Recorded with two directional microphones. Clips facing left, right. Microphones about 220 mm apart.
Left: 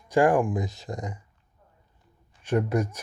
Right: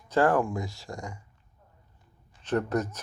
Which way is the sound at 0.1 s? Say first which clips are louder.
Left 3 dB; 15° left (ahead or behind).